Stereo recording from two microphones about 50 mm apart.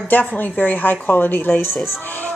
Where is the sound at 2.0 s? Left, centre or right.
Left.